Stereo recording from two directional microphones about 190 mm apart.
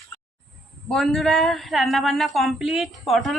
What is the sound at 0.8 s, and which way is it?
Speech, centre (ahead or behind).